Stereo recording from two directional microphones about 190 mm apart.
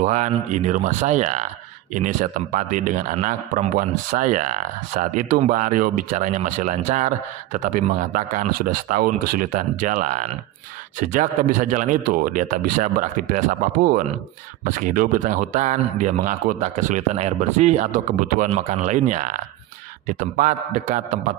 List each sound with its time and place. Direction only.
0.0 s speech: 40° right (ahead or behind)